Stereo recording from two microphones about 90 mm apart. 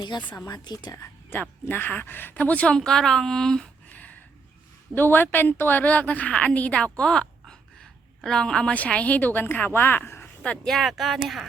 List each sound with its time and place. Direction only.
0.0 s speech: 55° left (ahead or behind)
1.0 s a woman's voice: 20° left (ahead or behind); by 11.4 s centre (ahead or behind)